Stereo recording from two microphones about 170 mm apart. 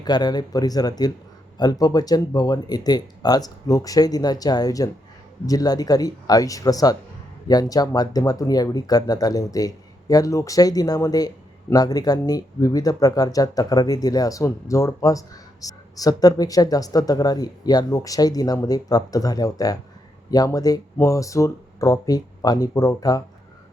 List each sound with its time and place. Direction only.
0.0 s speech: 25° left (ahead or behind)